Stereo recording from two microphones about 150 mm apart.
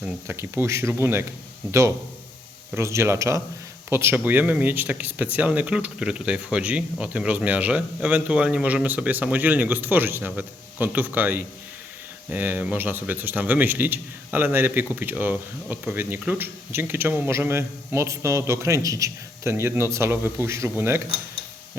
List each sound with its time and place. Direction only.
0.0 s speech: 15° right (ahead or behind)
2.7 s speech: 20° right (ahead or behind)